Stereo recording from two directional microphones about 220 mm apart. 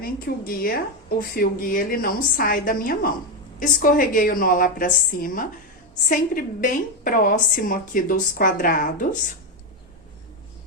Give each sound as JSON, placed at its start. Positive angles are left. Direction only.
{"t": 0.0, "sound": "a woman's voice", "side_deg": 40}